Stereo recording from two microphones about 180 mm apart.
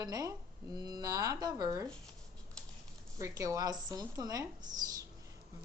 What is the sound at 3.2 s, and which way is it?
Speech, 20° right (ahead or behind).